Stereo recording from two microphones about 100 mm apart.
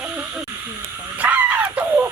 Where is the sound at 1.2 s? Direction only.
15° right (ahead or behind).